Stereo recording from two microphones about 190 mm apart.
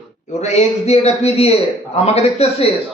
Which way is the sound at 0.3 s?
35° left (ahead or behind).